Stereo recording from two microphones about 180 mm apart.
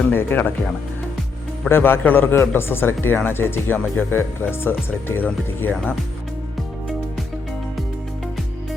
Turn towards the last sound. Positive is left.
turn(degrees=0)  # may be behind; listen again after turning